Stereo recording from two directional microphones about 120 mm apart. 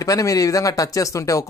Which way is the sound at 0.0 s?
30° left (ahead or behind).